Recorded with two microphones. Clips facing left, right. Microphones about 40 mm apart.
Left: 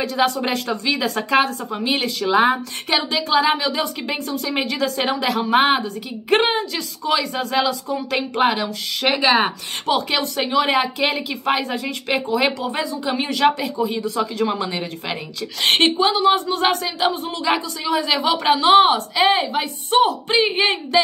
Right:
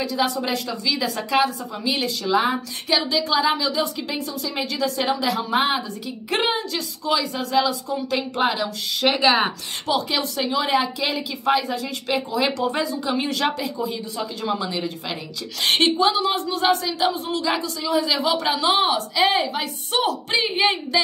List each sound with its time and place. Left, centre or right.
0.2 s speech: left
9.2 s speech: centre
9.8 s speech: left
12.5 s speech: centre
13.1 s speech: left
16.0 s speech: left
19.1 s speech: centre